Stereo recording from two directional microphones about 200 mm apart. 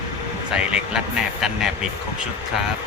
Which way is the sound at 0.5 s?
5° right (ahead or behind).